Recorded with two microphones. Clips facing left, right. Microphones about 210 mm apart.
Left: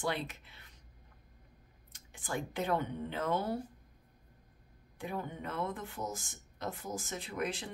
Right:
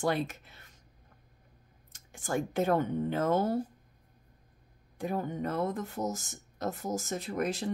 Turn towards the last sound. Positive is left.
turn(degrees=-45)  # may be behind; listen again after turning